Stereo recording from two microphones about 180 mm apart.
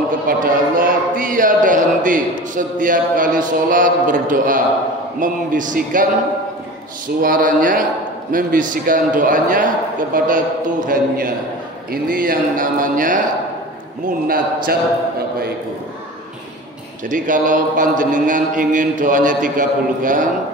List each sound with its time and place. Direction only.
0.3 s a man's voice: 50° right (ahead or behind)
7.2 s a man's voice: 50° right (ahead or behind)
17.1 s a man's voice: 45° right (ahead or behind)